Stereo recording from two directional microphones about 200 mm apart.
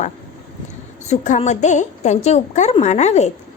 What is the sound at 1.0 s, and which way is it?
Speech, 35° left (ahead or behind).